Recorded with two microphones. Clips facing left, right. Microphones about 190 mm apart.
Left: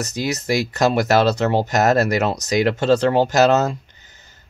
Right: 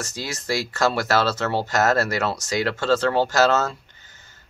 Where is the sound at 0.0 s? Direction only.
20° left (ahead or behind).